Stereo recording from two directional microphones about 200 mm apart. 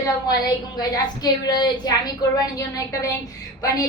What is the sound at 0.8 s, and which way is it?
A woman's voice, 20° left (ahead or behind).